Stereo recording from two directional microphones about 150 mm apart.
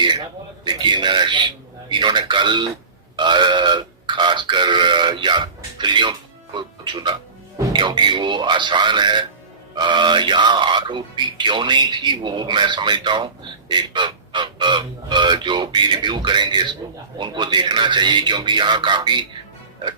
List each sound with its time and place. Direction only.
0.6 s a man's voice: 30° right (ahead or behind)
3.2 s burping: 30° right (ahead or behind)
7.7 s speech: 30° right (ahead or behind)